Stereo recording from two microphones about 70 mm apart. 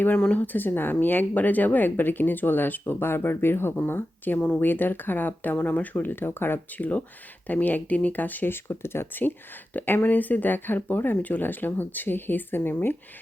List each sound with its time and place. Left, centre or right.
0.2 s speech: centre